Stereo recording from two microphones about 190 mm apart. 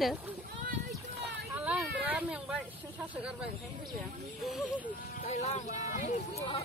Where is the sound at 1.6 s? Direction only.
5° right (ahead or behind).